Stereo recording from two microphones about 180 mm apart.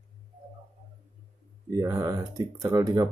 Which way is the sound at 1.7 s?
20° right (ahead or behind).